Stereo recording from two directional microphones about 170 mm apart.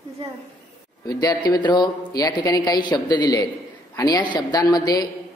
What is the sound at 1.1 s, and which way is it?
Speech, 20° left (ahead or behind).